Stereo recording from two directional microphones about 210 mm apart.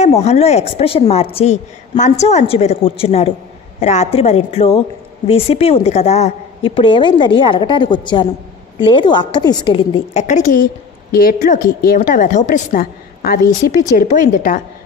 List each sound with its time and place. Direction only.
0.0 s a woman's voice: 30° left (ahead or behind)